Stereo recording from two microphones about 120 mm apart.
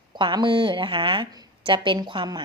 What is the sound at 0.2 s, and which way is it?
A woman's voice, 45° right (ahead or behind).